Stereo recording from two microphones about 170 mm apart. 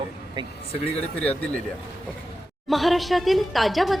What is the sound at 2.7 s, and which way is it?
A woman's voice, centre (ahead or behind).